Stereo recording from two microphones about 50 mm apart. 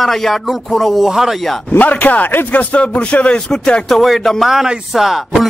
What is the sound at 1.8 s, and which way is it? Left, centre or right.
A man's voice, left.